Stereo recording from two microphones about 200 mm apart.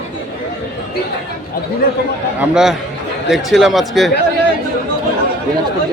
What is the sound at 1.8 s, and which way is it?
Speech, 50° left (ahead or behind).